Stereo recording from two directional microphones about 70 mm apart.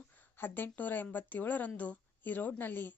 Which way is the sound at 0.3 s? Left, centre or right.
Left.